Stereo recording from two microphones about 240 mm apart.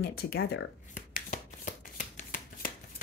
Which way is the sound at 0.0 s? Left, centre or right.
Left.